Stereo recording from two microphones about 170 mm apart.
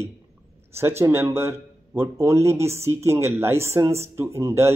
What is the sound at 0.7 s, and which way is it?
Speech, 15° right (ahead or behind).